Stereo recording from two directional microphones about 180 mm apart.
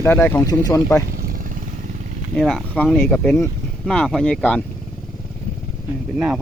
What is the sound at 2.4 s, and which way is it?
Speech, 5° left (ahead or behind).